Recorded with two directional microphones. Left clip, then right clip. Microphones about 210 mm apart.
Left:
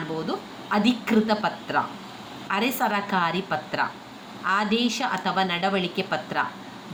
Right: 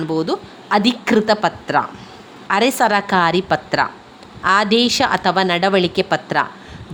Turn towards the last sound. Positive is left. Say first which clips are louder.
# right 9 dB
turn(degrees=-50)  # may be behind; listen again after turning